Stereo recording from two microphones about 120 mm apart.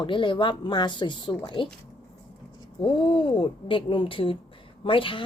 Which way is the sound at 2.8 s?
50° left (ahead or behind).